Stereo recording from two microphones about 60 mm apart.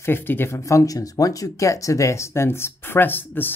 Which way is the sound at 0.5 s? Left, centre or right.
Left.